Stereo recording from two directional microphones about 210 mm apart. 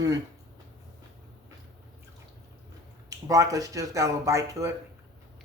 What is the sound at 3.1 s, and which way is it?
Speech, 15° right (ahead or behind).